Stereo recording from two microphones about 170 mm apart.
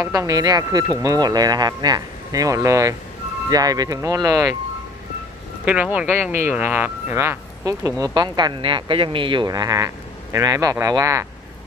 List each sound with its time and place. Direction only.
0.0 s speech: 20° right (ahead or behind)
5.7 s speech: 10° right (ahead or behind)